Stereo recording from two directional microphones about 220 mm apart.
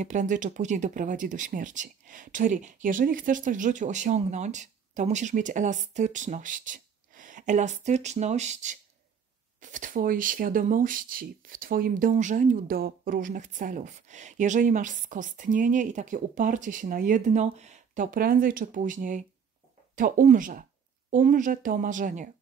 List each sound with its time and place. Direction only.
0.0 s speech: 35° right (ahead or behind)